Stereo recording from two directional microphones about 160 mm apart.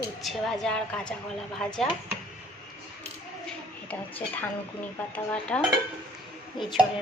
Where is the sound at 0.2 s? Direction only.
Centre (ahead or behind).